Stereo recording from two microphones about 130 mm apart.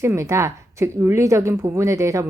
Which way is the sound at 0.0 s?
20° right (ahead or behind).